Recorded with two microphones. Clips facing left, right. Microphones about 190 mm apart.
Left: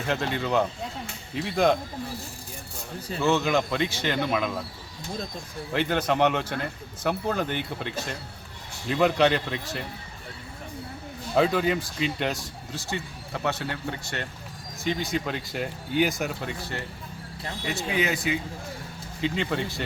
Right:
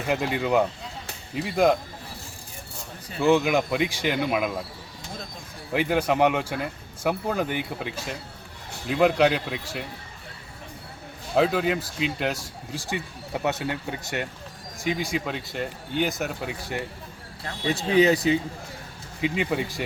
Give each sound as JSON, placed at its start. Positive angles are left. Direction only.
{"t": 0.1, "sound": "speech", "side_deg": -10}
{"t": 3.2, "sound": "speech", "side_deg": -15}
{"t": 5.7, "sound": "speech", "side_deg": -10}
{"t": 11.3, "sound": "speech", "side_deg": 0}
{"t": 17.7, "sound": "speech", "side_deg": -35}
{"t": 19.2, "sound": "speech", "side_deg": -10}